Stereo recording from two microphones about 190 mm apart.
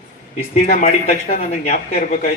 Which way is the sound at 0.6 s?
40° left (ahead or behind).